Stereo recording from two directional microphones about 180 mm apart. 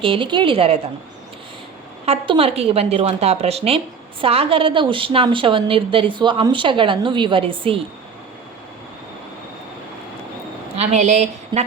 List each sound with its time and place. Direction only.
0.0 s a woman's voice: 30° right (ahead or behind)
2.0 s a woman's voice: 30° right (ahead or behind)
10.8 s a woman's voice: 40° right (ahead or behind)